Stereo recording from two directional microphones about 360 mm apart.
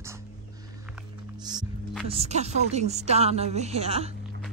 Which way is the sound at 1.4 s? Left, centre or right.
Centre.